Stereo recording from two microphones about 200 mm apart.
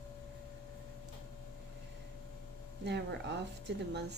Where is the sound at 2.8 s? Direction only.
60° right (ahead or behind).